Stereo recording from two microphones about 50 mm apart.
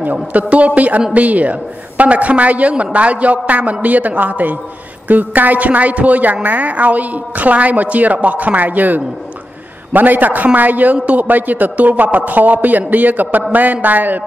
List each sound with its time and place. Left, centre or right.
0.0 s a man's voice: right